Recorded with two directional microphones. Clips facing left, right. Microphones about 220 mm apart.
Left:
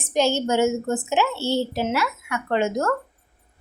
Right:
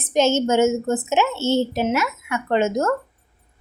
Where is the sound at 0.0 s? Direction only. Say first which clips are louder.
Right 3 dB; 20° right (ahead or behind).